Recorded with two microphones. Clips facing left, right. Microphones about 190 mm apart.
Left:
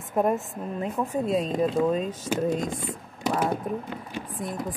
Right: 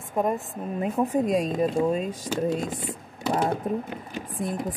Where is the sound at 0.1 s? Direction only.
5° left (ahead or behind).